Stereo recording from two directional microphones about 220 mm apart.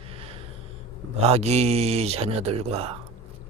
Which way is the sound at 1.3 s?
30° right (ahead or behind).